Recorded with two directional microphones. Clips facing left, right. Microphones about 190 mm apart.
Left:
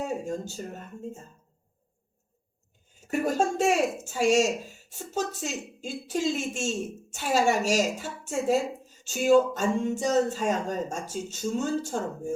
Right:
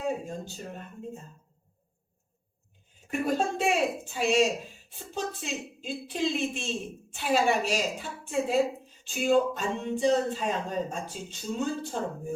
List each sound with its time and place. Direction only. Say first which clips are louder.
0.0 s a woman's voice: left 1 dB; 45° left (ahead or behind)
3.0 s a woman's voice: left 2 dB; 45° left (ahead or behind)